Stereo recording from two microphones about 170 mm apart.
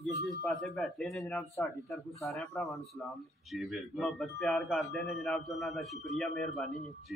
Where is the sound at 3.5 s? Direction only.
Centre (ahead or behind).